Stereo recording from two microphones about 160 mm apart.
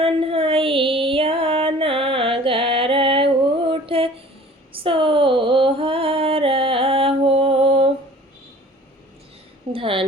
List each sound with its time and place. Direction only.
0.0 s music: 35° right (ahead or behind)
3.7 s mantra: 35° right (ahead or behind)
4.8 s female singing: 35° right (ahead or behind)
9.7 s a woman's voice: 35° right (ahead or behind)